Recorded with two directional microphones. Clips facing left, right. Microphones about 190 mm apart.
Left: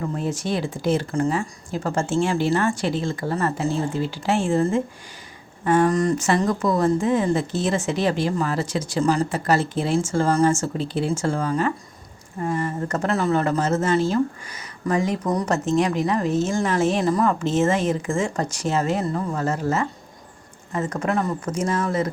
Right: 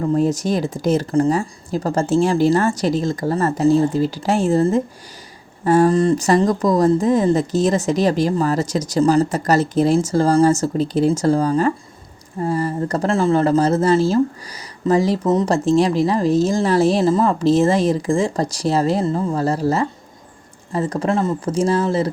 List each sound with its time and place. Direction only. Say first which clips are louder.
0.1 s speech: right 7 dB; 40° right (ahead or behind)